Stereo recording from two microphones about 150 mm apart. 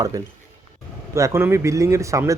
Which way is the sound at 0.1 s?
25° right (ahead or behind).